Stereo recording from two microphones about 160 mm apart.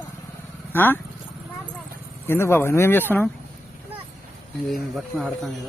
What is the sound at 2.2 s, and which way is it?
Speech, 15° left (ahead or behind).